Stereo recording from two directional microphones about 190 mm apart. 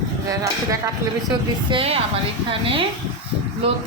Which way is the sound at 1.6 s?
30° right (ahead or behind).